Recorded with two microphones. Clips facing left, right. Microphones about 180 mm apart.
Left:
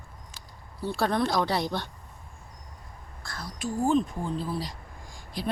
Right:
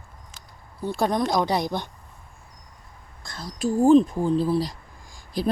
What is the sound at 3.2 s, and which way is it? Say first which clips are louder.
Whispering: right 1 dB; 20° right (ahead or behind).